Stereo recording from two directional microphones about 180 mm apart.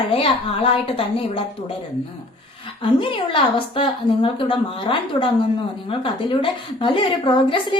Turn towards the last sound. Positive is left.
turn(degrees=30)  # may be behind; listen again after turning